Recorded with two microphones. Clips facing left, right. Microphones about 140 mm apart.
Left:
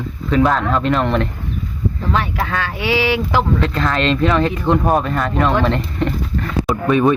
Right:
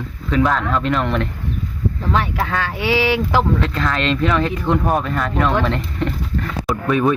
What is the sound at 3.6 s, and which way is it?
Speech, 30° left (ahead or behind).